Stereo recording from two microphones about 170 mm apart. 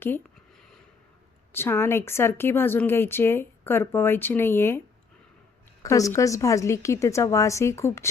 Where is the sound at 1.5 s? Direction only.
15° left (ahead or behind).